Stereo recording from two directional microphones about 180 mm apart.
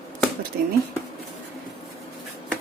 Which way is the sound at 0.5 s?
60° right (ahead or behind).